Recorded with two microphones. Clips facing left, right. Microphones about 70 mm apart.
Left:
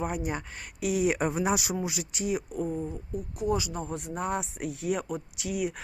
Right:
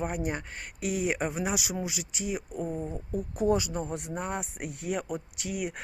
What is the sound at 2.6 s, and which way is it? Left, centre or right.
Speech, centre.